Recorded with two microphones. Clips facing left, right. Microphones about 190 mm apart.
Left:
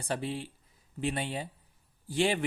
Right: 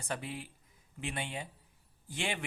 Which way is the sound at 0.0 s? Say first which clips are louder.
Left 6 dB; 30° left (ahead or behind).